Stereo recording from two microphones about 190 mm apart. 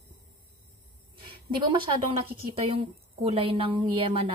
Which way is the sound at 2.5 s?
30° right (ahead or behind).